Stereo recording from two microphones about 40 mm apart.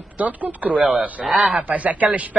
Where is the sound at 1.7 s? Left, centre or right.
Right.